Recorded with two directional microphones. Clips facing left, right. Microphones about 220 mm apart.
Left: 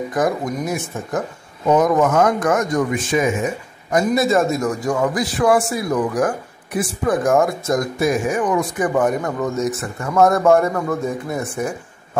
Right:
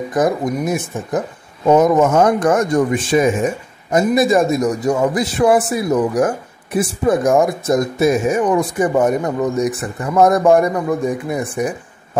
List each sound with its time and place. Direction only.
0.7 s a man's voice: 20° right (ahead or behind)
3.9 s a man's voice: 15° right (ahead or behind)